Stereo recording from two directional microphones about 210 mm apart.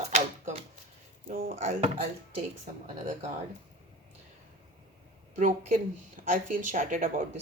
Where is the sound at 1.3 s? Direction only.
45° right (ahead or behind).